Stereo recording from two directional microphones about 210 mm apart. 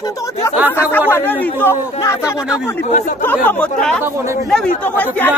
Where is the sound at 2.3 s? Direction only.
5° right (ahead or behind).